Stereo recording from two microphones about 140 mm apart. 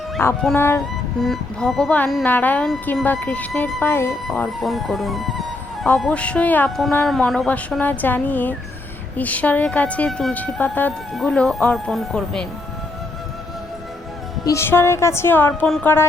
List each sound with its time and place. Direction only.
0.2 s speech: 20° left (ahead or behind)
1.2 s speech: 5° left (ahead or behind)
4.4 s speech: centre (ahead or behind)
14.4 s a woman's voice: 20° left (ahead or behind)
15.6 s speech: 5° left (ahead or behind)